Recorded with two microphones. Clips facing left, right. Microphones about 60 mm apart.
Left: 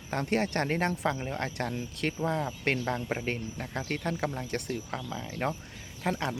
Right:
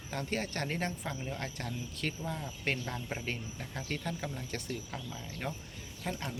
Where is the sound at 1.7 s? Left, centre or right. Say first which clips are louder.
Left 5 dB; left.